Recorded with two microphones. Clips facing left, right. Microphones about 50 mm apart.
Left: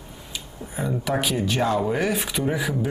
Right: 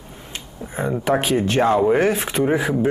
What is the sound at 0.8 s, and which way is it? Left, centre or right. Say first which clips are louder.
Speech: right 5 dB; right.